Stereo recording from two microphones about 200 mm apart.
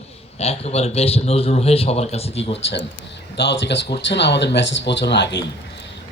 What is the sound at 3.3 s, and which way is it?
Speech, 60° left (ahead or behind).